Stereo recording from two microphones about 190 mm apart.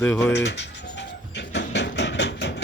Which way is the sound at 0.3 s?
65° left (ahead or behind).